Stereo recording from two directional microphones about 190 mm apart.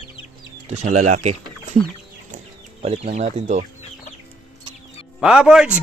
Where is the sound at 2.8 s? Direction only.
35° right (ahead or behind).